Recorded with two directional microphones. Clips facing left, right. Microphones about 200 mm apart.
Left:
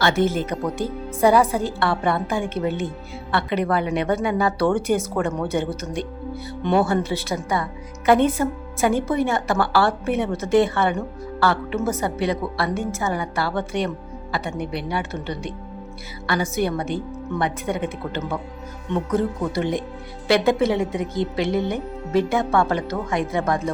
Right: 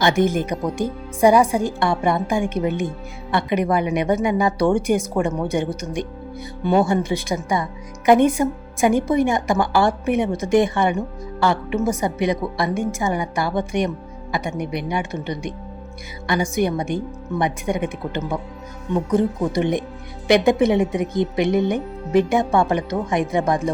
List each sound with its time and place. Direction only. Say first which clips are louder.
0.0 s a woman's voice: right 2 dB; 15° right (ahead or behind)